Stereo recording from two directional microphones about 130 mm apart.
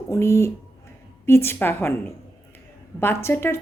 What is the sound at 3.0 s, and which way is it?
Speech, 20° left (ahead or behind).